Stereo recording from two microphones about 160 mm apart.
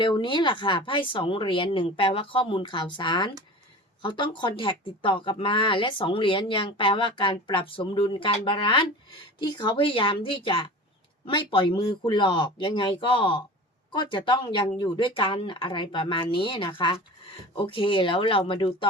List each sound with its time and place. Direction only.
0.0 s speech: 30° left (ahead or behind)